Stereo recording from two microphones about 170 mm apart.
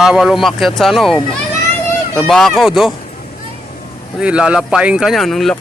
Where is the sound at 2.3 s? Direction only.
Centre (ahead or behind).